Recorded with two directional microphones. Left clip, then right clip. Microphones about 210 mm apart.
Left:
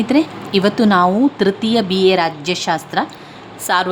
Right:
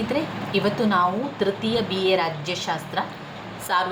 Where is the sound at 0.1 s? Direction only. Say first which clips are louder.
Left 10 dB; 55° left (ahead or behind).